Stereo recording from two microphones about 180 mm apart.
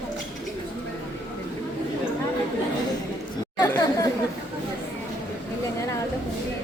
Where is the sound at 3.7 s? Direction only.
20° left (ahead or behind).